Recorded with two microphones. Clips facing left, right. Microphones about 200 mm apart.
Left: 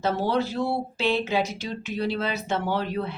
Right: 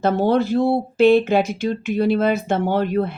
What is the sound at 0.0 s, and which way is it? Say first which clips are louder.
Speech: right 7 dB; 55° right (ahead or behind).